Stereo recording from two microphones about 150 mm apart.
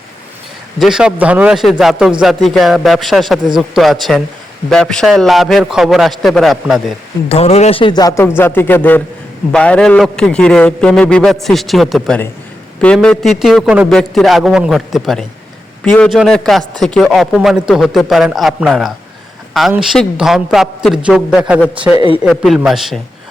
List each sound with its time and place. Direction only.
0.8 s a man's voice: 5° right (ahead or behind)
7.3 s a man's voice: 45° left (ahead or behind); by 23.0 s centre (ahead or behind)